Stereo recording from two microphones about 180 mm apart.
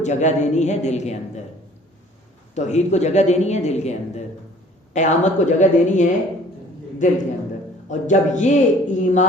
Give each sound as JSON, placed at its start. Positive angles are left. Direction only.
{"t": 0.0, "sound": "a man's voice", "side_deg": 40}
{"t": 2.6, "sound": "a man's voice", "side_deg": 40}